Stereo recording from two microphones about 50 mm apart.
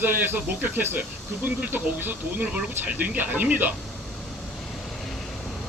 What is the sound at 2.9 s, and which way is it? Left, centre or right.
Speech, right.